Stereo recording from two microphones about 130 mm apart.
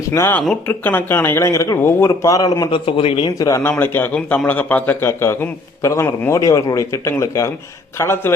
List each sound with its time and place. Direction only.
0.1 s a man's voice: 20° left (ahead or behind); by 3.2 s 45° left (ahead or behind)
3.2 s a man's voice: 25° left (ahead or behind)